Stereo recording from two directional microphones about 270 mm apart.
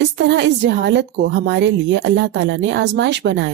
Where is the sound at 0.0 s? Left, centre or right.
Right.